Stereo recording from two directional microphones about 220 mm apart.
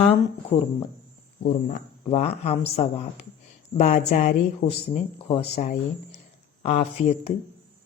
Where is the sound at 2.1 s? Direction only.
30° left (ahead or behind).